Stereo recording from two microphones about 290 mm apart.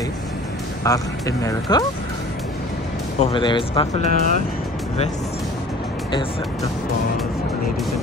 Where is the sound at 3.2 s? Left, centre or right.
Centre.